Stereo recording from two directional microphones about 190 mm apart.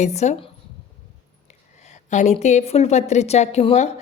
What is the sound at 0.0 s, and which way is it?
Speech, 35° left (ahead or behind).